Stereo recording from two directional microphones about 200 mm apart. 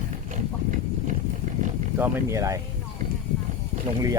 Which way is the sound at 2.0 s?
15° right (ahead or behind).